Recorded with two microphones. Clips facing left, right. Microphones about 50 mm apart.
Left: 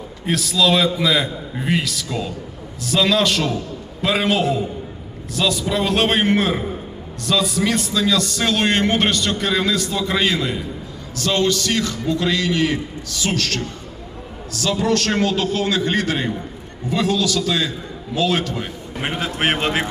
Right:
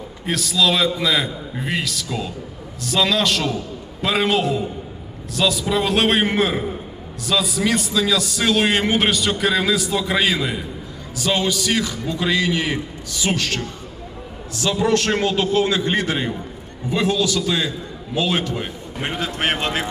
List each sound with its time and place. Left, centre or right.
0.3 s a man's voice: centre; by 18.7 s right
18.9 s a man's voice: centre